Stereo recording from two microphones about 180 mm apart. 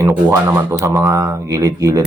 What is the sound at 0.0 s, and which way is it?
Speech, 15° right (ahead or behind).